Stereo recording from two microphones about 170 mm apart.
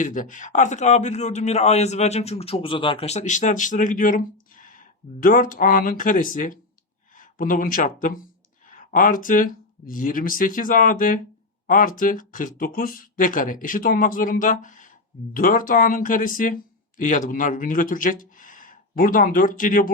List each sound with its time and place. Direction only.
0.0 s a man's voice: 50° left (ahead or behind)